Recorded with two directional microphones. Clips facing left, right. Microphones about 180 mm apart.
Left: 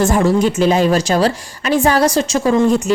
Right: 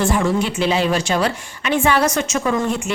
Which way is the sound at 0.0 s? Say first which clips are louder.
Left 5 dB; 40° left (ahead or behind).